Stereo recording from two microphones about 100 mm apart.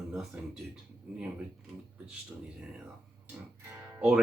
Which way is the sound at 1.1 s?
15° right (ahead or behind).